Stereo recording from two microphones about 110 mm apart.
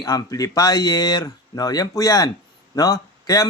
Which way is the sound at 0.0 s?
30° left (ahead or behind).